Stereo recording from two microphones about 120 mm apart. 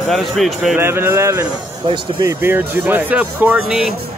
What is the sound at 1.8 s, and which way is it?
Speech, 40° right (ahead or behind).